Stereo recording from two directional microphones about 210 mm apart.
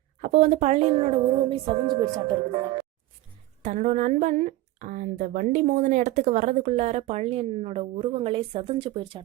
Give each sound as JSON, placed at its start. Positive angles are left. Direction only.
{"t": 0.2, "sound": "speech", "side_deg": -30}
{"t": 3.6, "sound": "speech", "side_deg": -35}